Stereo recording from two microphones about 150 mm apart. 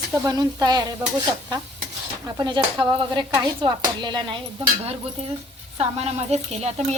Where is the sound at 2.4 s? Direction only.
30° right (ahead or behind).